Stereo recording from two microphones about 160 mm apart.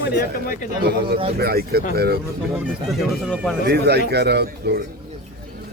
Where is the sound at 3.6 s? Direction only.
90° right.